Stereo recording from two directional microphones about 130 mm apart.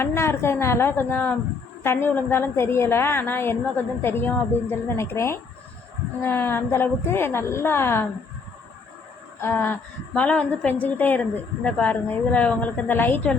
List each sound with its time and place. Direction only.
0.0 s a woman's voice: 20° left (ahead or behind)
9.4 s a woman's voice: 15° left (ahead or behind)